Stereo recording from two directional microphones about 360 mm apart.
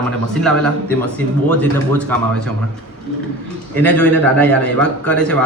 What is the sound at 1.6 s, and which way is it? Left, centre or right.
Speech, centre.